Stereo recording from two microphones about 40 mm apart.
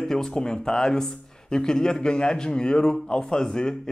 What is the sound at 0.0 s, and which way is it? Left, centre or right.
Speech, centre.